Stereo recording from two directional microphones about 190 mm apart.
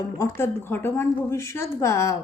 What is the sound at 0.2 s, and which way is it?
A woman's voice, 15° left (ahead or behind).